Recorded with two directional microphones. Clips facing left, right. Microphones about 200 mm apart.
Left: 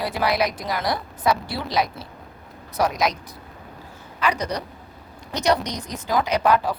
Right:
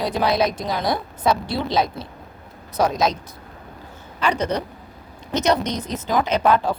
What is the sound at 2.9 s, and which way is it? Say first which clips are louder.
Speech: right 3 dB; 25° right (ahead or behind).